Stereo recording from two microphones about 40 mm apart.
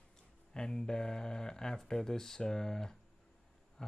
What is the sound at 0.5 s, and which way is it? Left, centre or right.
Speech, centre.